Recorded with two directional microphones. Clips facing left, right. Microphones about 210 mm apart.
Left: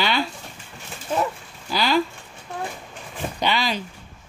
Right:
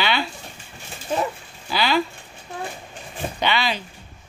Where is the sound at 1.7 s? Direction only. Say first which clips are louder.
Even; 40° left (ahead or behind).